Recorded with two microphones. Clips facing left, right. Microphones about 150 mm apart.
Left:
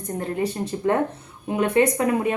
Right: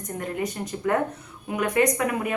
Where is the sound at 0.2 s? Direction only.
30° left (ahead or behind).